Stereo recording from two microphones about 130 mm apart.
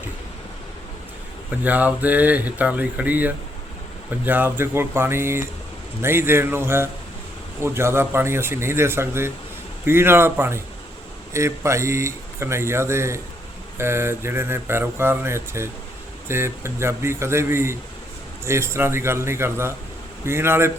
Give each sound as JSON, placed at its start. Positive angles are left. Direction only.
{"t": 1.5, "sound": "speech", "side_deg": -15}